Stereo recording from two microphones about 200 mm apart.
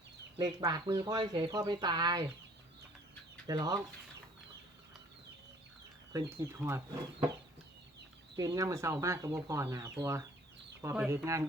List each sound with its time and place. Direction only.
0.3 s speech: 20° right (ahead or behind)
3.4 s speech: 20° right (ahead or behind)
6.1 s speech: 15° right (ahead or behind)
8.4 s speech: 15° right (ahead or behind)